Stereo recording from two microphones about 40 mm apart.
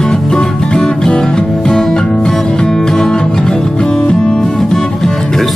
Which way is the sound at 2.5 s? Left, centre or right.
Left.